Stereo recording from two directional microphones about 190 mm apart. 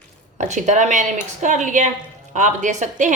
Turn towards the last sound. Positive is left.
turn(degrees=-40)  # may be behind; listen again after turning